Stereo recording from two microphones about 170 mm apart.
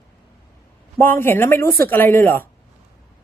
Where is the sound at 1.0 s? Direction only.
10° left (ahead or behind).